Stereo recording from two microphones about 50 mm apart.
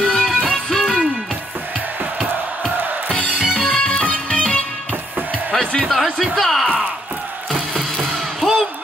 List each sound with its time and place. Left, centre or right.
0.0 s music: centre
3.3 s music: centre
3.6 s music: centre
5.9 s music: centre